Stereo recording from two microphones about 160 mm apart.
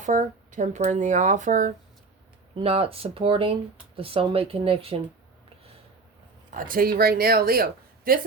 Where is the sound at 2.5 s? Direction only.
35° right (ahead or behind).